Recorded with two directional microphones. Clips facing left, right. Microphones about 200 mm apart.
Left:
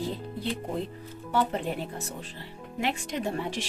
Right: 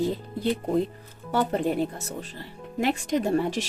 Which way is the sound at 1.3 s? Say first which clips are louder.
Right 4 dB; 40° right (ahead or behind).